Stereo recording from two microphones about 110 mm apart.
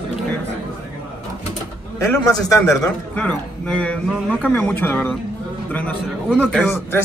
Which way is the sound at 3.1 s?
10° left (ahead or behind).